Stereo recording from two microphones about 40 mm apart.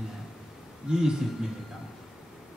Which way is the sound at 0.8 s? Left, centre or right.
Centre.